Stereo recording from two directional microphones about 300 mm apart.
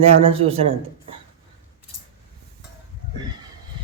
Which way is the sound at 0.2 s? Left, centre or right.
Centre.